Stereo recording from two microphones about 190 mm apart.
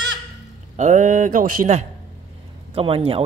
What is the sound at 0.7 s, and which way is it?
Speech, 40° right (ahead or behind).